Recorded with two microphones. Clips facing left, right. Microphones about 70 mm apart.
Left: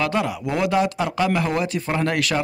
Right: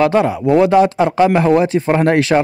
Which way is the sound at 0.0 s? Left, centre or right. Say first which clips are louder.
Right 9 dB; right.